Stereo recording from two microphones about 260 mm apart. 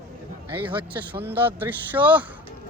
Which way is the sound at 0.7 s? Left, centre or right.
Centre.